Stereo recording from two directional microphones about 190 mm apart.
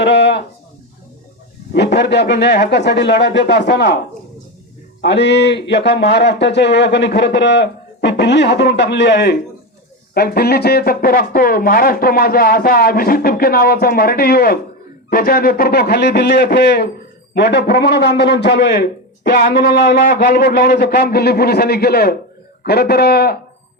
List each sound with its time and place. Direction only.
0.0 s a sound: 65° left (ahead or behind)
1.7 s a man's voice: 65° left (ahead or behind)
5.0 s a man's voice: 65° left (ahead or behind)